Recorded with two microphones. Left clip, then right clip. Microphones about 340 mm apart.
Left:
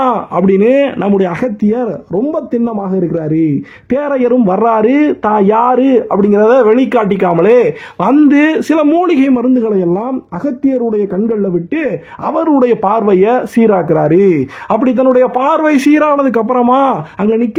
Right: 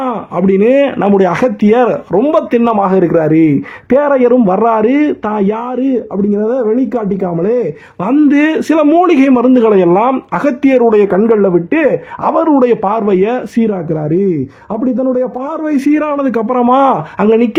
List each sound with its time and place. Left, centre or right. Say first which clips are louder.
0.0 s a man's voice: left 3 dB; centre; by 2.0 s right
2.1 s a man's voice: right 4 dB; right; by 6.1 s left
6.1 s speech: left 7 dB; left; by 9.9 s centre
9.9 s a man's voice: right 6 dB; right
11.7 s a man's voice: right 5 dB; centre